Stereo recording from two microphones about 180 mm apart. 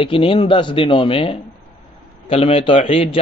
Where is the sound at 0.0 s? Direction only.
30° left (ahead or behind).